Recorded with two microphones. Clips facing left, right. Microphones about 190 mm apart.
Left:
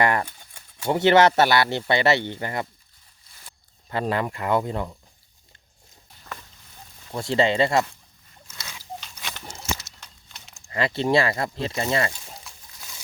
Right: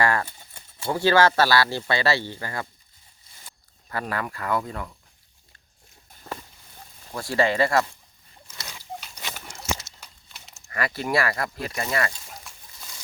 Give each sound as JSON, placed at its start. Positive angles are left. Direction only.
{"t": 0.0, "sound": "a man's voice", "side_deg": 20}
{"t": 0.3, "sound": "a sound", "side_deg": -5}
{"t": 0.9, "sound": "a man's voice", "side_deg": 20}
{"t": 3.8, "sound": "a man's voice", "side_deg": 25}
{"t": 6.3, "sound": "boat", "side_deg": -30}
{"t": 7.1, "sound": "a man's voice", "side_deg": 20}
{"t": 10.0, "sound": "walk", "side_deg": -5}
{"t": 10.7, "sound": "a man's voice", "side_deg": 25}